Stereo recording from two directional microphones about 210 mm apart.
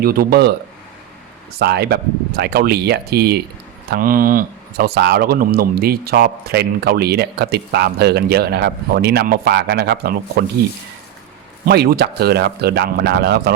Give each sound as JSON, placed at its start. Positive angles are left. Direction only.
{"t": 0.0, "sound": "speech", "side_deg": -45}
{"t": 1.5, "sound": "speech", "side_deg": -50}
{"t": 11.6, "sound": "speech", "side_deg": -45}